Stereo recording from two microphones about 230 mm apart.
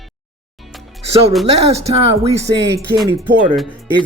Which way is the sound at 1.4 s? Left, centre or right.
Right.